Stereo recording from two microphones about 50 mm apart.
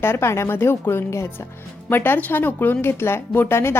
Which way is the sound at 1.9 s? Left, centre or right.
Left.